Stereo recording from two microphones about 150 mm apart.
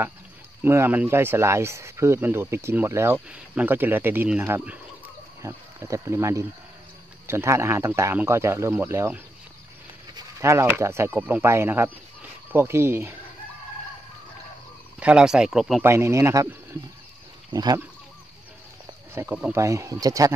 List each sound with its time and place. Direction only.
0.7 s speech: 15° right (ahead or behind)
15.0 s speech: 5° right (ahead or behind)
15.8 s speech: 20° right (ahead or behind)
19.2 s speech: 20° right (ahead or behind)